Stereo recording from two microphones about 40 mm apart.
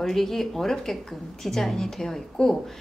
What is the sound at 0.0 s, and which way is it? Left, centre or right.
A woman's voice, centre.